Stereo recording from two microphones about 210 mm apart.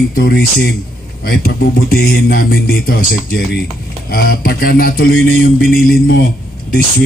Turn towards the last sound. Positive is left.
turn(degrees=45)  # may be behind; listen again after turning